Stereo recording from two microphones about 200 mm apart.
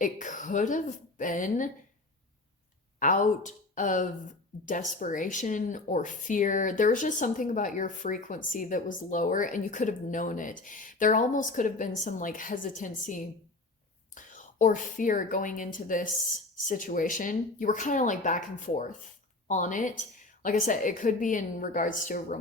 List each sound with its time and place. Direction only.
0.0 s speech: 40° left (ahead or behind)
3.0 s speech: 40° left (ahead or behind)